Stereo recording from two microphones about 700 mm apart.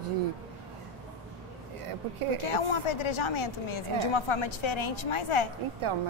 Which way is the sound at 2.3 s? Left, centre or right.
Left.